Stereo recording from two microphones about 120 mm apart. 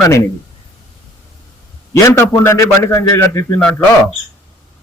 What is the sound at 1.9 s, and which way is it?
A man's voice, 25° left (ahead or behind).